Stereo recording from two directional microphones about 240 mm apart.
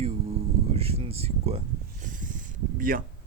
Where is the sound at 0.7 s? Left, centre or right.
Right.